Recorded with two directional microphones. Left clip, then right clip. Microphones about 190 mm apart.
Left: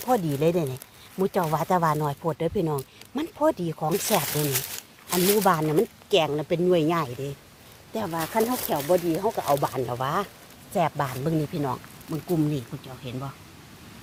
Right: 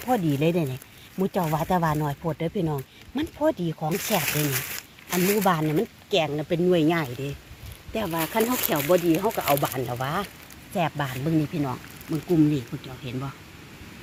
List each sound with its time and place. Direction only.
0.0 s speech: centre (ahead or behind)
5.1 s speech: 30° left (ahead or behind)
5.4 s speech: 5° left (ahead or behind); by 9.6 s 10° right (ahead or behind)
9.6 s speech: 5° left (ahead or behind)